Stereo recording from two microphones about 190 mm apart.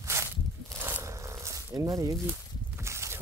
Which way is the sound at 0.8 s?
15° right (ahead or behind).